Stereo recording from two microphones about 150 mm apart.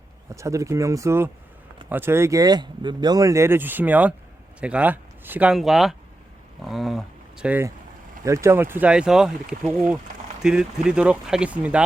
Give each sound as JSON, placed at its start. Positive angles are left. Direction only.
{"t": 0.3, "sound": "speech", "side_deg": -20}